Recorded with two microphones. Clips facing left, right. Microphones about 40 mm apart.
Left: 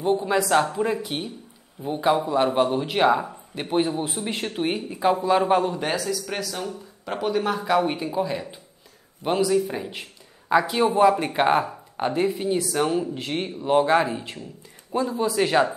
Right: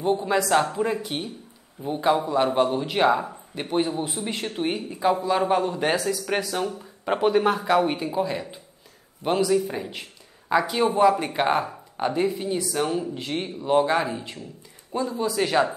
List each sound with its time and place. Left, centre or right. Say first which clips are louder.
0.4 s a man's voice: left 1 dB; centre
5.8 s a man's voice: right 2 dB; centre